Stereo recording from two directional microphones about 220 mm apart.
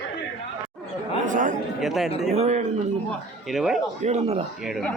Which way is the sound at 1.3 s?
35° right (ahead or behind).